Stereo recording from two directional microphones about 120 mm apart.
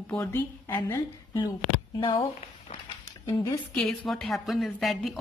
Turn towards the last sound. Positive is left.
turn(degrees=0)  # may be behind; listen again after turning